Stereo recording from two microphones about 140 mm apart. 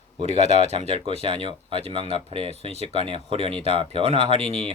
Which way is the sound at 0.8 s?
50° left (ahead or behind).